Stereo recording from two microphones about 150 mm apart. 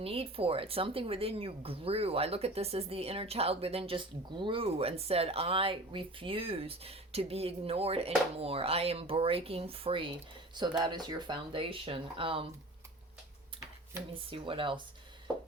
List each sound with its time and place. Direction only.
0.0 s speech: 40° right (ahead or behind)
14.1 s speech: 35° right (ahead or behind)